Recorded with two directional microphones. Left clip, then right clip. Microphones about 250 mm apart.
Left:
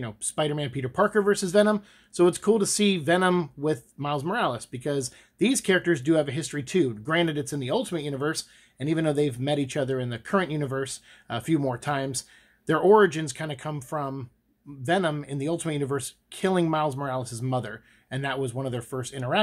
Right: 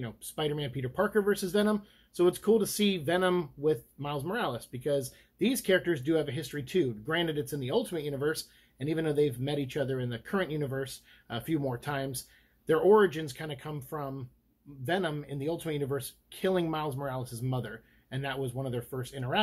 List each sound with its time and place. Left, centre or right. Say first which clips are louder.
0.0 s speech: left 6 dB; left